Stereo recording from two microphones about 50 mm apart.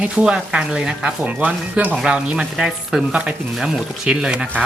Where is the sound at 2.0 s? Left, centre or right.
Centre.